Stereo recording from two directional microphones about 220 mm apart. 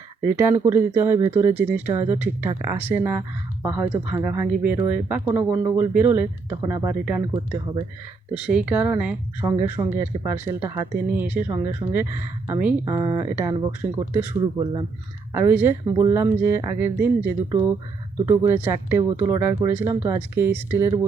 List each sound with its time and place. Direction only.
0.3 s speech: 10° right (ahead or behind)
8.3 s speech: 5° right (ahead or behind)